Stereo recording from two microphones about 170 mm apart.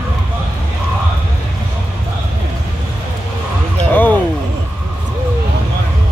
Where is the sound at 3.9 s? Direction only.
10° left (ahead or behind).